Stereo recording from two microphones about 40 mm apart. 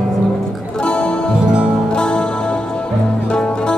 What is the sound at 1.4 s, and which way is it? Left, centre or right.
Music, right.